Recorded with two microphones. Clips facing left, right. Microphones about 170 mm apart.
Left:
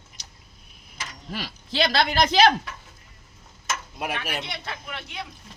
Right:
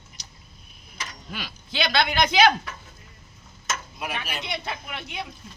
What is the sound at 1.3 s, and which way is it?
Speech, 35° left (ahead or behind).